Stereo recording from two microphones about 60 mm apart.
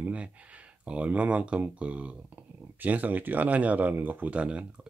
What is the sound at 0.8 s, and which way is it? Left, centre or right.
Speech, right.